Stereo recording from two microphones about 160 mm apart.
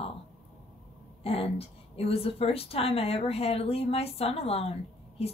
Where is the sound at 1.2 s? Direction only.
40° left (ahead or behind).